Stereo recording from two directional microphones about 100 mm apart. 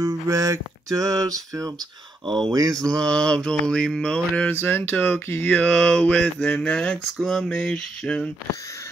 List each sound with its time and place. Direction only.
0.0 s music: 35° right (ahead or behind)
3.0 s mantra: 10° left (ahead or behind)